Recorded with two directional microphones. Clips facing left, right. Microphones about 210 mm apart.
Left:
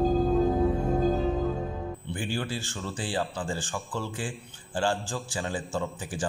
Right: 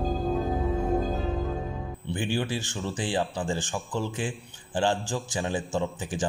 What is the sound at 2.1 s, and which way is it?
Music, 20° right (ahead or behind).